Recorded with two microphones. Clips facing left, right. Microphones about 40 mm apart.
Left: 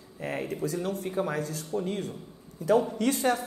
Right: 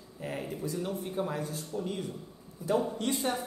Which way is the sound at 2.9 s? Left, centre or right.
Left.